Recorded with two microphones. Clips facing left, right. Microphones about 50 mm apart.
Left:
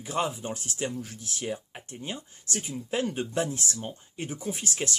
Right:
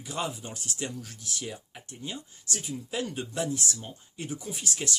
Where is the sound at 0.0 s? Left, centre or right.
Left.